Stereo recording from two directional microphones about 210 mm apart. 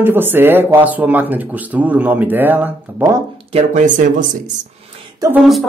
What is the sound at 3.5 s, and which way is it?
Speech, 35° right (ahead or behind).